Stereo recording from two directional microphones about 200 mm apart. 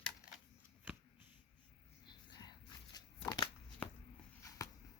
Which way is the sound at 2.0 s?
20° left (ahead or behind).